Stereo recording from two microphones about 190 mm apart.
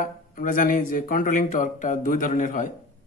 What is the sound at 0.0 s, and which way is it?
Speech, 45° left (ahead or behind).